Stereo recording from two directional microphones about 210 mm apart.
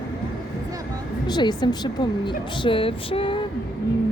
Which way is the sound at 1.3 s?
20° left (ahead or behind).